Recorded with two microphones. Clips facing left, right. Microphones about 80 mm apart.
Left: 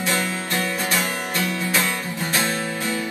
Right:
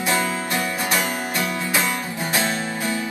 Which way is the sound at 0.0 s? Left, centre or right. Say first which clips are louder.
Right 2 dB; right.